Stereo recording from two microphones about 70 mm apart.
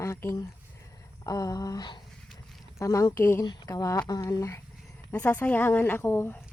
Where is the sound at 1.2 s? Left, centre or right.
Left.